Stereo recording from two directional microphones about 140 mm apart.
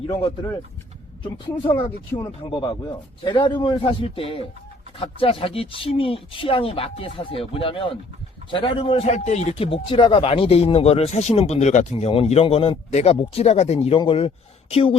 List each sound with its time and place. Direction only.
1.2 s a man's voice: 40° left (ahead or behind)